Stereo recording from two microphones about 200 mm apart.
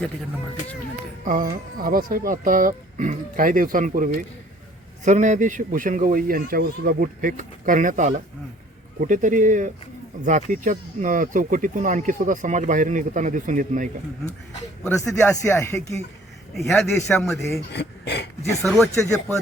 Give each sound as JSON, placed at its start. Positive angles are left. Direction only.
{"t": 1.2, "sound": "speech", "side_deg": -45}
{"t": 14.8, "sound": "speech", "side_deg": 15}
{"t": 16.6, "sound": "a man's voice", "side_deg": 0}
{"t": 16.8, "sound": "speech", "side_deg": 15}
{"t": 17.2, "sound": "a man's voice", "side_deg": 0}
{"t": 17.7, "sound": "speech", "side_deg": 55}
{"t": 18.6, "sound": "a man's voice", "side_deg": 0}